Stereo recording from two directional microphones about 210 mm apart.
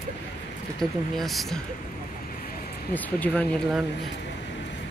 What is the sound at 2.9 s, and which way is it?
Speech, 10° left (ahead or behind).